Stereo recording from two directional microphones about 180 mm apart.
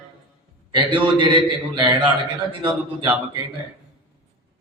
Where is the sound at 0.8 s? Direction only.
25° right (ahead or behind).